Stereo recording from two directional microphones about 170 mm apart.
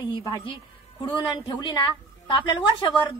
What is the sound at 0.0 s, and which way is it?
Music, 25° left (ahead or behind).